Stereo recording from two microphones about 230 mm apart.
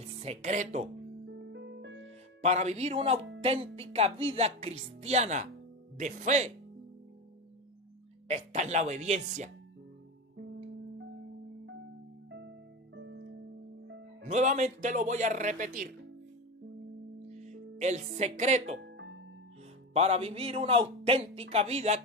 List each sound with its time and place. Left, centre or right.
0.2 s speech: right
1.2 s music: right
2.4 s a man's voice: right
8.3 s speech: right
12.9 s music: right
14.2 s speech: right
17.3 s speech: right
18.8 s music: right
19.9 s a man's voice: right